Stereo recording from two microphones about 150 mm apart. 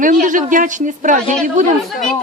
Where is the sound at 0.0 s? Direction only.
60° right (ahead or behind).